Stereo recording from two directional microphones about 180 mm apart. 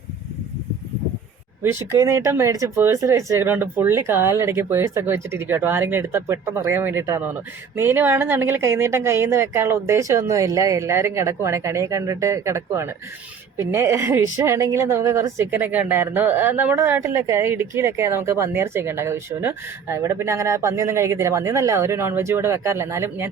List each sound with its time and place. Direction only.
1.6 s a woman's voice: 15° right (ahead or behind)